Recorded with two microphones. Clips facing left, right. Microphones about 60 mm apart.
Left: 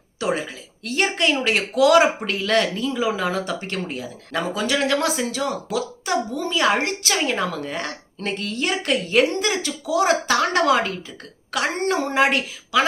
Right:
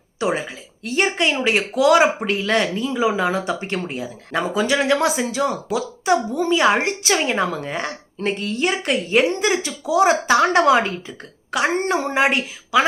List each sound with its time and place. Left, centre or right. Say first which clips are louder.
0.2 s speech: right 2 dB; centre